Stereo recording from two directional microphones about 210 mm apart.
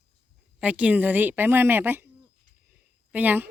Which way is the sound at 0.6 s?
5° right (ahead or behind).